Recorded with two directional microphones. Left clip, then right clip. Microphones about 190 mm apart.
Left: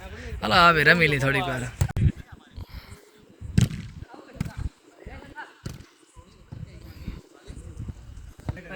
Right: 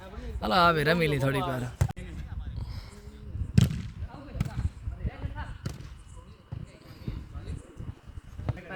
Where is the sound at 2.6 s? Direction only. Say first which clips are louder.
Left 2 dB; 15° right (ahead or behind).